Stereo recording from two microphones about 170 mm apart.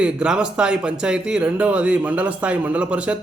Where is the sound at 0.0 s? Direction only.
5° right (ahead or behind).